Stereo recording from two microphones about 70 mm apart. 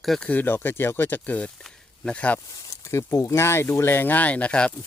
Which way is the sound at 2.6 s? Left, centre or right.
Left.